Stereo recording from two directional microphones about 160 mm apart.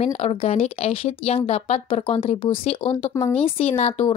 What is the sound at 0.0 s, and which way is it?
A woman's voice, 40° left (ahead or behind).